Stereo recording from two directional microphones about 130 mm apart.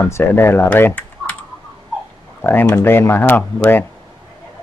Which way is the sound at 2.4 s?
15° left (ahead or behind).